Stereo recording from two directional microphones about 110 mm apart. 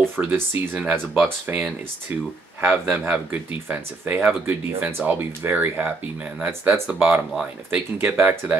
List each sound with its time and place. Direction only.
0.1 s speech: 15° right (ahead or behind)